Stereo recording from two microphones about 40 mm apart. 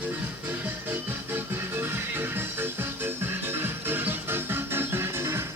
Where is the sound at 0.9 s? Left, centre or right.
Right.